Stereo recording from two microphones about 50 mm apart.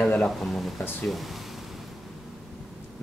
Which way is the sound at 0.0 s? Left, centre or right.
Left.